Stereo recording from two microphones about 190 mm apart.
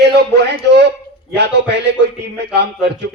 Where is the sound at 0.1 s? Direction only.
60° right (ahead or behind).